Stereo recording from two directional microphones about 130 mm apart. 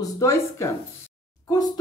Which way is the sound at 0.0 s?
20° left (ahead or behind).